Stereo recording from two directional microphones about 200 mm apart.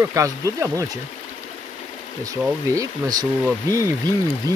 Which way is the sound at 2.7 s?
20° right (ahead or behind).